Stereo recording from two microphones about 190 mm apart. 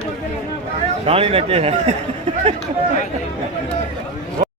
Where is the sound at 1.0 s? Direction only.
30° right (ahead or behind).